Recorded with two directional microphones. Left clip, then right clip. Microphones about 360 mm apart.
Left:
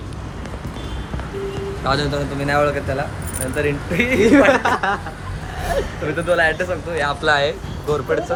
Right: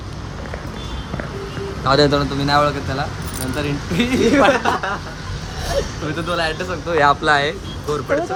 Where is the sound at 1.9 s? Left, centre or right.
Centre.